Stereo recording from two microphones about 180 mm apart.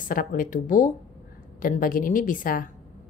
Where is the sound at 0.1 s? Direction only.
50° left (ahead or behind).